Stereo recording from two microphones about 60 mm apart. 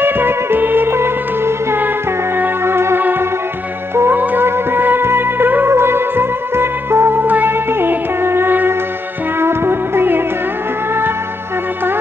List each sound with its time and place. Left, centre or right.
0.0 s music: right
4.2 s music: right